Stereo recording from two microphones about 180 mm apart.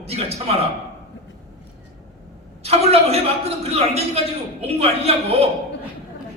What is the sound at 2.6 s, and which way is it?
A man's voice, 35° right (ahead or behind).